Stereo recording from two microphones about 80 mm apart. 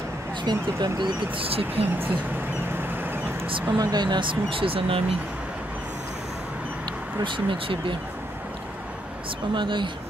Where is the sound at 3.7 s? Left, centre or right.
Right.